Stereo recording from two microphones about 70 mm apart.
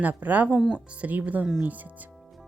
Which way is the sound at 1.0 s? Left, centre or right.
Right.